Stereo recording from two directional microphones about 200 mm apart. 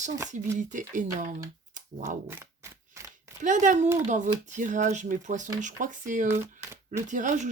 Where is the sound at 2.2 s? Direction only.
15° right (ahead or behind).